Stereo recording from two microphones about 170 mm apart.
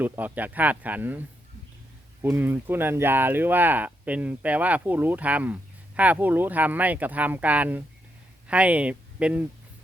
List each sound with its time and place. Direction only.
0.0 s speech: 10° right (ahead or behind)
2.2 s speech: 15° right (ahead or behind)